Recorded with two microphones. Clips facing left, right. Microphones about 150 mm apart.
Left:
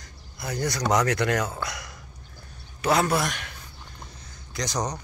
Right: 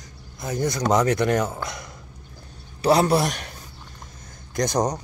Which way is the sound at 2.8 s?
35° right (ahead or behind).